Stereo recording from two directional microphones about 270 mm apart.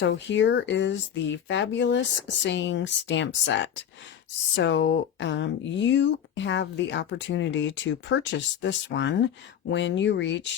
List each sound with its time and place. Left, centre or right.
0.0 s speech: left